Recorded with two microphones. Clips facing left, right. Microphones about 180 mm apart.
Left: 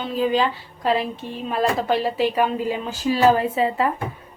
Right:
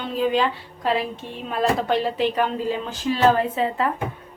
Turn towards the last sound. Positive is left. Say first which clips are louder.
# left 1 dB
turn(degrees=5)  # may be behind; listen again after turning